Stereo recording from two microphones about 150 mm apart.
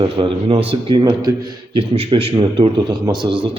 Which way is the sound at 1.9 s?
40° right (ahead or behind).